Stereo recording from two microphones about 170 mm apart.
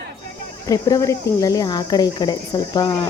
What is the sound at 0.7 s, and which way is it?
Speech, 20° left (ahead or behind).